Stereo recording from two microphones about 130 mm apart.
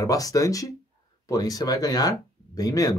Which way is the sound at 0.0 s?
25° left (ahead or behind).